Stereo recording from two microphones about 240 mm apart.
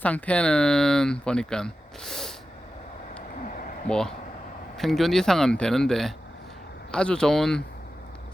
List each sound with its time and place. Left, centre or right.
0.0 s speech: centre
3.5 s a sound: left
3.8 s speech: centre